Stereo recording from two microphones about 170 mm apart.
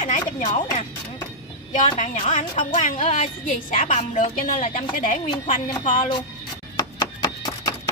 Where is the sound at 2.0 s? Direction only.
45° left (ahead or behind).